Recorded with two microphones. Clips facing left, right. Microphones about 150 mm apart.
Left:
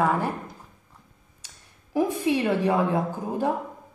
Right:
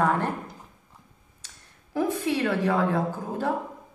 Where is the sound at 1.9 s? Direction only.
15° left (ahead or behind).